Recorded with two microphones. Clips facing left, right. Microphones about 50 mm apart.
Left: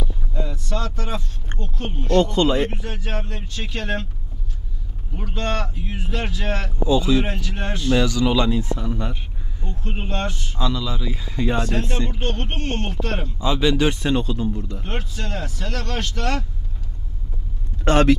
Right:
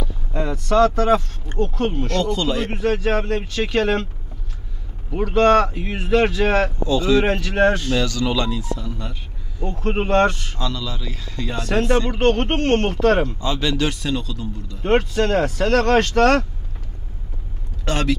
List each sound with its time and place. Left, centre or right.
0.3 s speech: right
2.3 s a man's voice: left
2.7 s speech: right
5.1 s speech: right
6.9 s speech: centre
7.2 s speech: right
7.9 s speech: centre
8.5 s a man's voice: left
9.6 s speech: right
10.6 s speech: centre
11.7 s speech: right
13.4 s a man's voice: centre; by 14.8 s left
14.8 s speech: right
17.8 s speech: left